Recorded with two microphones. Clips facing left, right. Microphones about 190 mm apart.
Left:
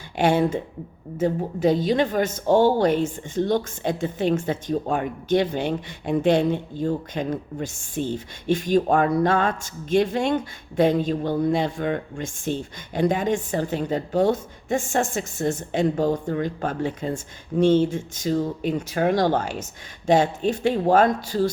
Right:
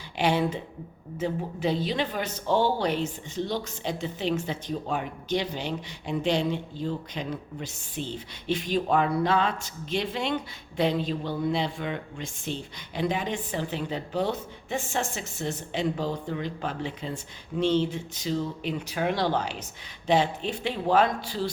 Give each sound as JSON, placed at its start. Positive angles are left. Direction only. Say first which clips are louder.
{"t": 0.2, "sound": "speech", "louder": "left 5 dB", "side_deg": 50}